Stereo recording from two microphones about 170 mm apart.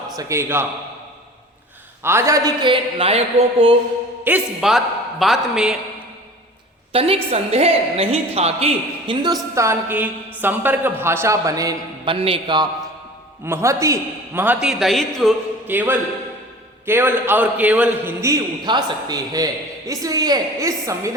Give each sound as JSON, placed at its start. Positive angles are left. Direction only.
{"t": 0.2, "sound": "a man's voice", "side_deg": -15}
{"t": 2.0, "sound": "a man's voice", "side_deg": -15}
{"t": 4.2, "sound": "a man's voice", "side_deg": -10}
{"t": 6.9, "sound": "a woman's voice", "side_deg": -35}
{"t": 9.2, "sound": "a man's voice", "side_deg": -20}
{"t": 13.4, "sound": "a man's voice", "side_deg": -15}
{"t": 15.6, "sound": "a man's voice", "side_deg": -10}